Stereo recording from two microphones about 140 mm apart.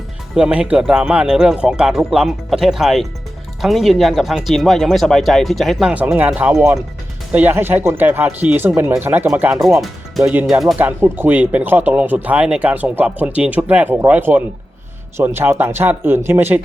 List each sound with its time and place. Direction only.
0.3 s speech: 5° right (ahead or behind)
9.6 s speech: centre (ahead or behind)
10.8 s speech: 15° right (ahead or behind)